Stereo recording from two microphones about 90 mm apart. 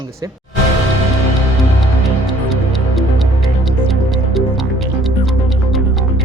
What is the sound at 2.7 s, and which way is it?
Music, centre (ahead or behind).